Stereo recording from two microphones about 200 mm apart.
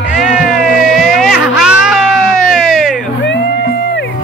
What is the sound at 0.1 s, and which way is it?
Music, 5° right (ahead or behind).